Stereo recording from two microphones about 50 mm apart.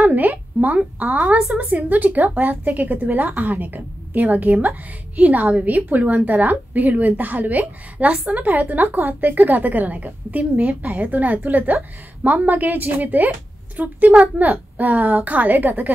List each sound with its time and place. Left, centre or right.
0.0 s a woman's voice: right